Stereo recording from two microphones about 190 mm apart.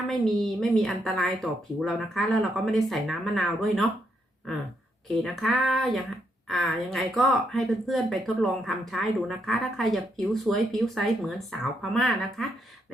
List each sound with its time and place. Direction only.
0.6 s speech: centre (ahead or behind)
5.2 s speech: centre (ahead or behind)